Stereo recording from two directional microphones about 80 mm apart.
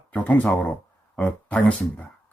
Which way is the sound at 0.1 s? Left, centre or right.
Centre.